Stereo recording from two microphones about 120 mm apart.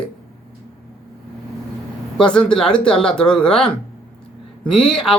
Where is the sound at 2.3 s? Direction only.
5° left (ahead or behind).